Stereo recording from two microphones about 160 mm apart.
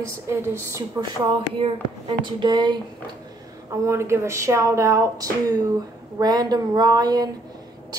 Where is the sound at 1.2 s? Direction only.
30° right (ahead or behind).